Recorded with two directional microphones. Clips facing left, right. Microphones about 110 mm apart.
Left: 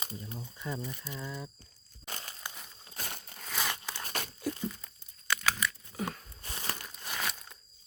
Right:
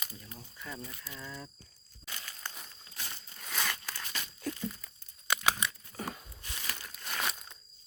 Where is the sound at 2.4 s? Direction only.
15° left (ahead or behind).